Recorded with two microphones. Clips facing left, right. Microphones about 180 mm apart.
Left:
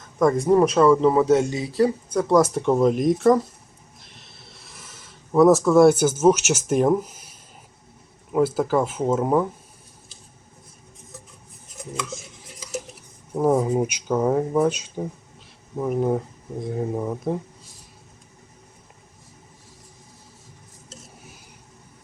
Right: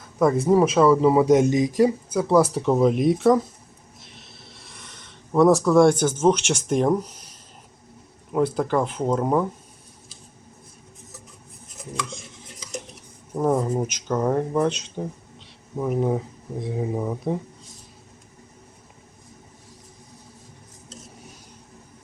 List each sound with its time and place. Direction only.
0.2 s speech: 5° right (ahead or behind)
2.2 s speech: centre (ahead or behind)
4.0 s a sound: centre (ahead or behind)
8.3 s speech: 5° left (ahead or behind)
11.8 s chopping: 5° left (ahead or behind)
12.7 s speech: 5° left (ahead or behind)